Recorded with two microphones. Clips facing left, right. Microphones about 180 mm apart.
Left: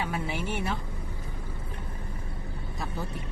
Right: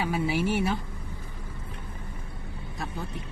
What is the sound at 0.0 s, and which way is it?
Speech, 5° right (ahead or behind).